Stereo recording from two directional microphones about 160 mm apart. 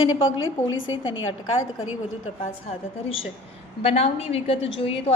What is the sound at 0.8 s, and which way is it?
Speech, 30° left (ahead or behind).